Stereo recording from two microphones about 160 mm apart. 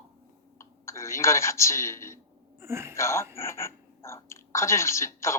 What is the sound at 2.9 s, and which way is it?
Speech, 15° left (ahead or behind).